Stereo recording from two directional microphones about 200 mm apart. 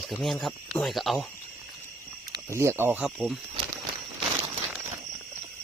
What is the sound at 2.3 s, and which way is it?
Speech, 15° right (ahead or behind).